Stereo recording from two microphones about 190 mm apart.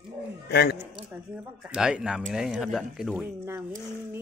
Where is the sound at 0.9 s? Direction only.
10° right (ahead or behind).